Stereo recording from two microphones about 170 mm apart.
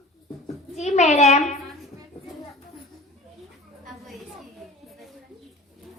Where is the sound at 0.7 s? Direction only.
40° left (ahead or behind).